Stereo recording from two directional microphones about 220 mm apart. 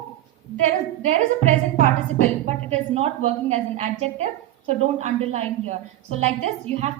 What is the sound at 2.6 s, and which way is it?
A woman's voice, 30° right (ahead or behind).